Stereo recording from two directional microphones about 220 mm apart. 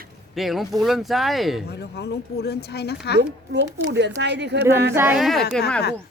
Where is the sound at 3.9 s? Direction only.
50° right (ahead or behind).